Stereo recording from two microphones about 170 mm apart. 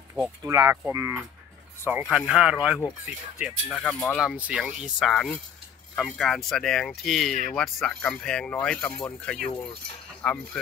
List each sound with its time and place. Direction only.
0.2 s speech: 15° right (ahead or behind); by 10.6 s 5° left (ahead or behind)